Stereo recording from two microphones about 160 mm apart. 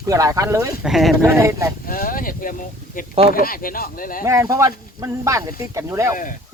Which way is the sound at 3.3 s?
60° left (ahead or behind).